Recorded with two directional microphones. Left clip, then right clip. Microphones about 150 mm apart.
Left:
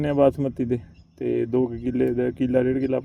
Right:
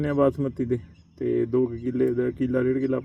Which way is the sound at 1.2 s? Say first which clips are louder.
Even; 30° left (ahead or behind).